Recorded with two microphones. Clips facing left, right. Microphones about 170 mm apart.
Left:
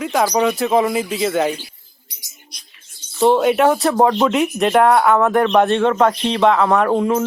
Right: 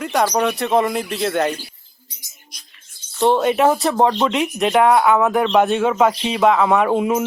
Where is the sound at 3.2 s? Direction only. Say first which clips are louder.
Left 2 dB; centre (ahead or behind).